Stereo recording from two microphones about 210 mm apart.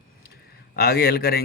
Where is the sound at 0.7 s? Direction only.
45° left (ahead or behind).